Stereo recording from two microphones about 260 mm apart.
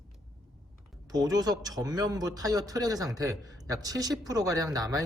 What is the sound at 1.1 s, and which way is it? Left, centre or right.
Speech, centre.